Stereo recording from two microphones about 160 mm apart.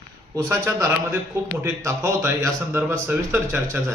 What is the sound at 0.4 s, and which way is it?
Speech, 15° right (ahead or behind).